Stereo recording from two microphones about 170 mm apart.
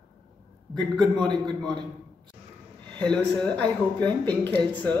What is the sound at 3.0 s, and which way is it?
Speech, 5° left (ahead or behind).